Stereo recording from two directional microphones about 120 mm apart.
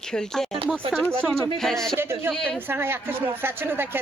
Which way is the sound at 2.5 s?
20° right (ahead or behind).